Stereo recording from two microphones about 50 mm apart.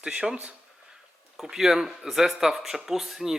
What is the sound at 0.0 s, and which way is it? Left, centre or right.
Speech, centre.